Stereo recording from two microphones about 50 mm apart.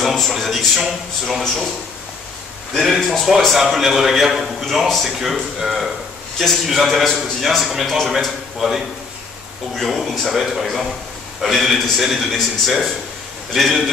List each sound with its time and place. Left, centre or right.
0.0 s a sound: centre
0.8 s a man's voice: centre
2.7 s a man's voice: centre